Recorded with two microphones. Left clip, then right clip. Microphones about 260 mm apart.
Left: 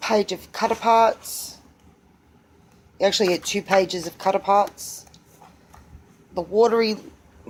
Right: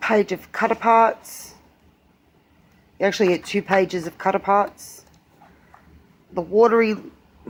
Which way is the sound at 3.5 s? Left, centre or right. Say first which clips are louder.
Even; right.